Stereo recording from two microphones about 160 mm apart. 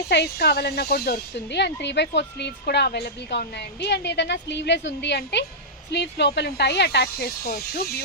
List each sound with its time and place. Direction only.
0.1 s speech: 90° left